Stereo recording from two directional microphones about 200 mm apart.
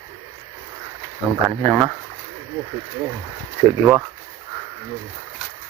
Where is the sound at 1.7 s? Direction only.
15° right (ahead or behind).